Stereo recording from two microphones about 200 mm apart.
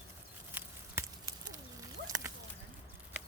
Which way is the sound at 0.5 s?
10° right (ahead or behind).